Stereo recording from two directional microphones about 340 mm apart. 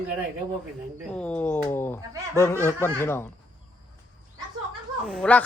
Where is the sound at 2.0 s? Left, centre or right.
Centre.